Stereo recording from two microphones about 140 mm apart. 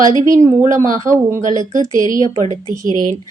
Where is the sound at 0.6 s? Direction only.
20° right (ahead or behind).